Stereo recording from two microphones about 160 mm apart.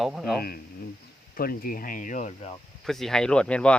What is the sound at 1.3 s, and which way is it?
Speech, 65° left (ahead or behind).